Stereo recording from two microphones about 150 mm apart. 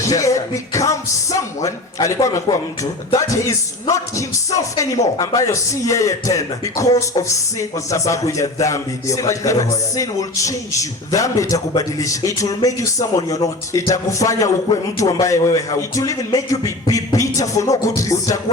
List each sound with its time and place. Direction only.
0.0 s a man's voice: 20° left (ahead or behind)